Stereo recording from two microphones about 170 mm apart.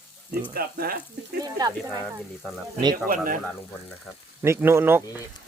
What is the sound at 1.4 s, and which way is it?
Speech, 25° right (ahead or behind).